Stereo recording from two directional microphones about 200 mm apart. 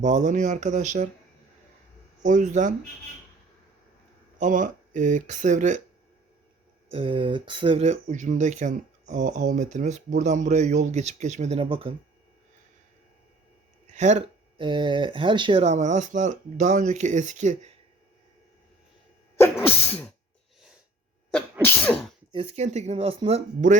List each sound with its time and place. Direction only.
0.0 s speech: 35° right (ahead or behind)
2.2 s speech: 40° right (ahead or behind)
4.4 s speech: 40° right (ahead or behind)
6.9 s speech: 25° right (ahead or behind)
13.9 s speech: 35° right (ahead or behind)
21.6 s sneeze: 10° left (ahead or behind)
22.3 s speech: 30° right (ahead or behind)